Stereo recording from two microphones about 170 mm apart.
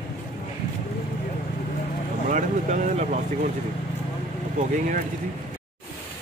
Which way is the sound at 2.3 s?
50° right (ahead or behind).